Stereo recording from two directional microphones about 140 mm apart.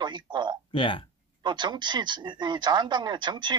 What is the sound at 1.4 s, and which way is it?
Speech, 35° right (ahead or behind).